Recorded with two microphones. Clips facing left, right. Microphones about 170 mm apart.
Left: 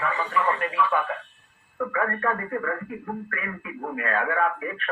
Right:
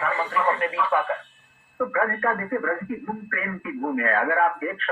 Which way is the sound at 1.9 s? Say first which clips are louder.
Right 1 dB; 35° right (ahead or behind).